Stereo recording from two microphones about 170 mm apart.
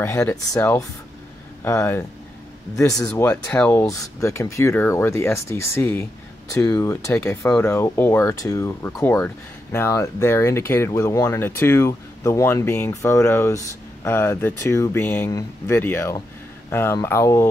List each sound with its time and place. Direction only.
0.0 s speech: 15° left (ahead or behind)